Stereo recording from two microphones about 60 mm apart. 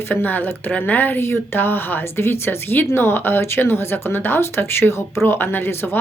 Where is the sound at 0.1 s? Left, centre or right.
Left.